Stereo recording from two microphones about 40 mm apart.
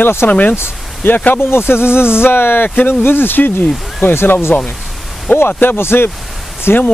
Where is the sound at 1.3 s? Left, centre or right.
Left.